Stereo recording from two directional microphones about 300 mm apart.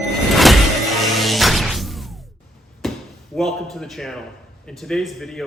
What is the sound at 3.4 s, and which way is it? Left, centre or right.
A man's voice, centre.